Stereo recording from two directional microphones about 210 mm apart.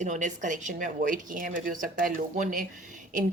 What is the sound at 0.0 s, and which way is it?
Speech, 35° right (ahead or behind).